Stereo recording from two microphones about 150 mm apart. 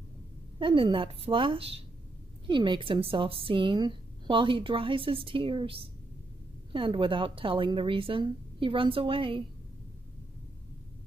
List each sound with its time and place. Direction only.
0.6 s speech: 35° right (ahead or behind)